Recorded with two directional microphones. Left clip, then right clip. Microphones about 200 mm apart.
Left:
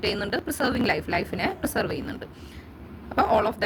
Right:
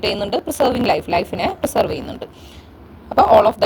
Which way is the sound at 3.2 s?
15° right (ahead or behind).